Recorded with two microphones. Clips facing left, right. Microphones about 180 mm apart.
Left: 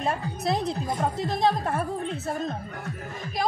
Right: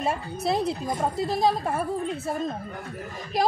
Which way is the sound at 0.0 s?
5° right (ahead or behind).